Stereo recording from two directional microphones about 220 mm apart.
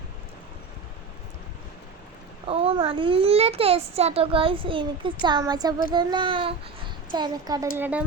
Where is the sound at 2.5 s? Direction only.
25° right (ahead or behind).